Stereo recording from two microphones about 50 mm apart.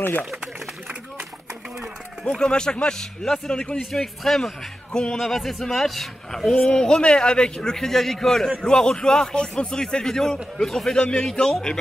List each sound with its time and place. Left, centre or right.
2.3 s a man's voice: centre
4.9 s a man's voice: centre
5.2 s speech: centre
6.5 s a man's voice: centre